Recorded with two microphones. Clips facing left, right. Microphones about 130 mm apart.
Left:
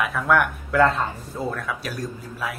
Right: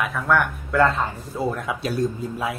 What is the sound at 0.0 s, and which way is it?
Speech, centre (ahead or behind).